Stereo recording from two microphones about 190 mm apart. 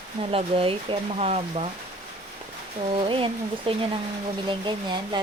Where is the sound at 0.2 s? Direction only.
30° right (ahead or behind).